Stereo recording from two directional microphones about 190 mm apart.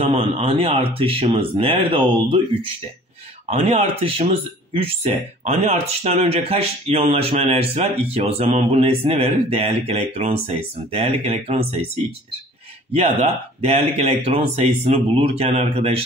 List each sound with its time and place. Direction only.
0.0 s speech: 30° right (ahead or behind)
12.9 s speech: 30° right (ahead or behind)